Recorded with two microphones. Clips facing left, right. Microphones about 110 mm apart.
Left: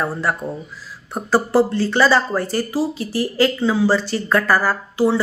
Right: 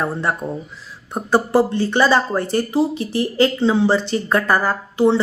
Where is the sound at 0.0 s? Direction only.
20° right (ahead or behind).